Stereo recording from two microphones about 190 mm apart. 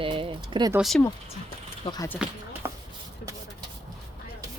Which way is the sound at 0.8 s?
Centre (ahead or behind).